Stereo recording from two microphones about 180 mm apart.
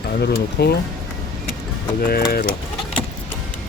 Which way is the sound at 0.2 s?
65° left (ahead or behind).